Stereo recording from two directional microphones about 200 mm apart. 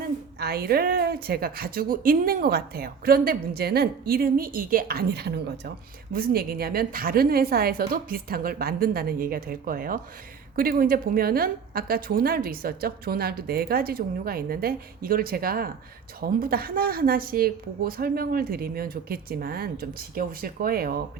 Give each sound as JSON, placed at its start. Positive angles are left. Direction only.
{"t": 0.0, "sound": "a woman's voice", "side_deg": -50}